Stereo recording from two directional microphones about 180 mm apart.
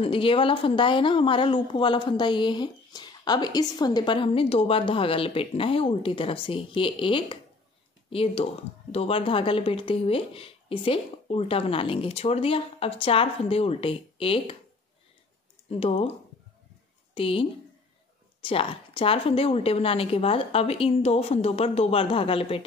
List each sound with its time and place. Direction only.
0.0 s a woman's voice: 30° left (ahead or behind)
15.7 s a woman's voice: 35° left (ahead or behind)